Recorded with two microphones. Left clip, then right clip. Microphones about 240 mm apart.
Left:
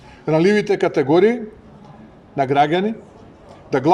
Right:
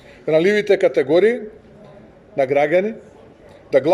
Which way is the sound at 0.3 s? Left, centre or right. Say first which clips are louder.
Right 1 dB; left.